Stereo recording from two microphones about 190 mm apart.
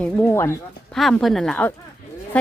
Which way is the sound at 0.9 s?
Centre (ahead or behind).